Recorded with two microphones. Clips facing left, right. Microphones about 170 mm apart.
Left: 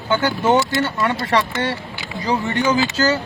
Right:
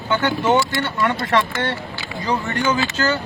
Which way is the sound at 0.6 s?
25° left (ahead or behind).